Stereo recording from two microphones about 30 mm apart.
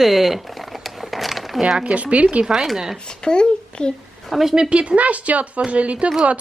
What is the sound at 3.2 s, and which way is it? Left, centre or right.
Speech, left.